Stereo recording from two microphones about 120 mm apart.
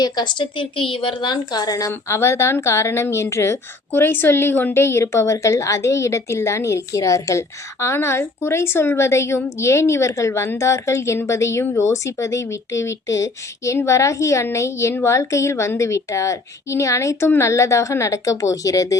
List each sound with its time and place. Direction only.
0.0 s a woman's voice: 40° left (ahead or behind)